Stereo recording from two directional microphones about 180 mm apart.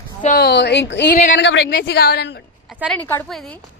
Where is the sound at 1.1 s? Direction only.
45° left (ahead or behind).